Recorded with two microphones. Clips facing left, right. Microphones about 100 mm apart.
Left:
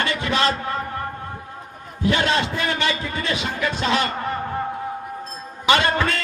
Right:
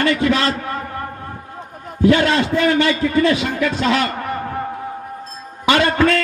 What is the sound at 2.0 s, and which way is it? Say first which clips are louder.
A man's voice: right 6 dB; 20° left (ahead or behind).